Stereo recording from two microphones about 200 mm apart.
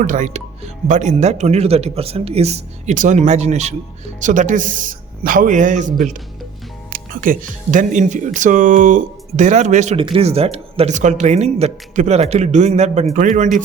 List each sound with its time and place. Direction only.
0.0 s speech: 40° right (ahead or behind)